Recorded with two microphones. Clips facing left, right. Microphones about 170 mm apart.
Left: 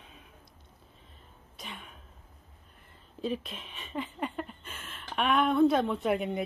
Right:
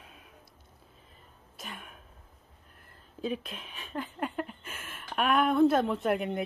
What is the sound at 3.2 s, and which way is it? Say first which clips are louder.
Speech: even; centre (ahead or behind).